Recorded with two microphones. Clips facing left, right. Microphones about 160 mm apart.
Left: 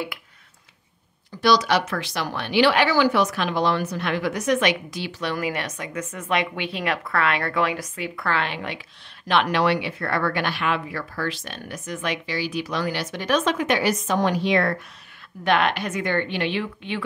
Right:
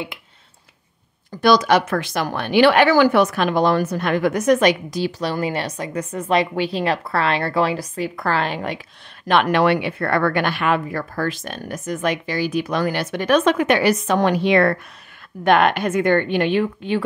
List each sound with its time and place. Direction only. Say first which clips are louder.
1.4 s a woman's voice: right 4 dB; 50° right (ahead or behind)
9.3 s speech: right 4 dB; 50° right (ahead or behind)
15.4 s speech: right 5 dB; 50° right (ahead or behind)